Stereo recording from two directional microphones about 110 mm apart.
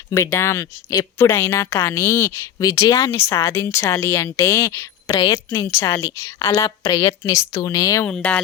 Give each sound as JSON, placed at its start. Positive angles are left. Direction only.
{"t": 0.1, "sound": "speech", "side_deg": 25}
{"t": 2.6, "sound": "speech", "side_deg": 35}
{"t": 5.1, "sound": "a woman's voice", "side_deg": 45}
{"t": 5.5, "sound": "speech", "side_deg": 25}
{"t": 8.0, "sound": "speech", "side_deg": 10}